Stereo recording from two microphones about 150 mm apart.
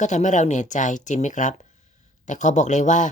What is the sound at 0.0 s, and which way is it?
Speech, 50° left (ahead or behind).